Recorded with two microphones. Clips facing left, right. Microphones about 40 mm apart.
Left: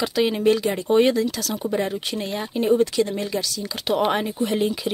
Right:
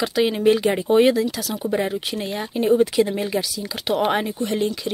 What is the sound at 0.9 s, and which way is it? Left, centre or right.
Speech, centre.